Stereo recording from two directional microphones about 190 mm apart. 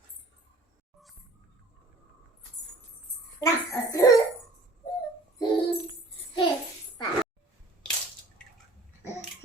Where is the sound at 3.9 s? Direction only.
15° left (ahead or behind).